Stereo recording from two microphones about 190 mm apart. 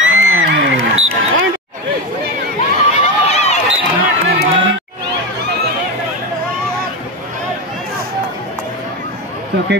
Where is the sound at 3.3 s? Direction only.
35° left (ahead or behind).